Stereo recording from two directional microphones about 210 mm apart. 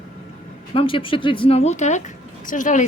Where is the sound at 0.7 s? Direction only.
25° left (ahead or behind).